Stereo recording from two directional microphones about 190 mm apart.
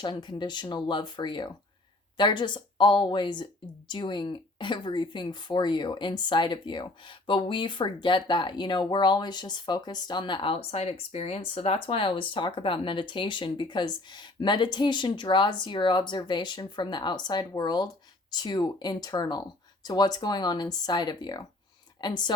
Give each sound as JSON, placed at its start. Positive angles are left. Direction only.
{"t": 0.0, "sound": "speech", "side_deg": 25}